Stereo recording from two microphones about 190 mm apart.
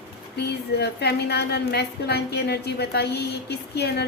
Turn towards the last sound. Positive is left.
turn(degrees=60)  # may be behind; listen again after turning